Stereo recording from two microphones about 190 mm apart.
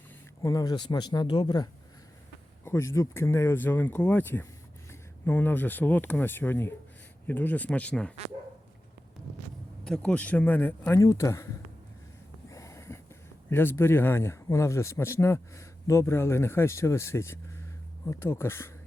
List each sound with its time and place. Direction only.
0.4 s a man's voice: 20° left (ahead or behind)
9.8 s a man's voice: 5° left (ahead or behind)
12.5 s a sound: 15° left (ahead or behind)
13.5 s a man's voice: 10° left (ahead or behind)